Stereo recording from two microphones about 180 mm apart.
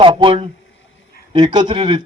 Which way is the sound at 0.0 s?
30° right (ahead or behind).